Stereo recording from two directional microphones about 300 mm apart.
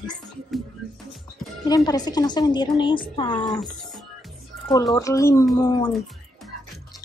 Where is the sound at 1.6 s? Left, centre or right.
Centre.